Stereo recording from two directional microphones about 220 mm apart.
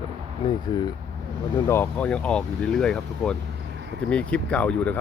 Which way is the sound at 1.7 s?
10° left (ahead or behind).